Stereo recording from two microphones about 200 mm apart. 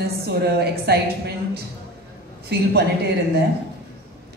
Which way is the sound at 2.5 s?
55° right (ahead or behind).